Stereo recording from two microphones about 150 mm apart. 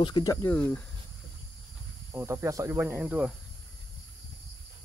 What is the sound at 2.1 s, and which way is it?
Cricket, 20° right (ahead or behind).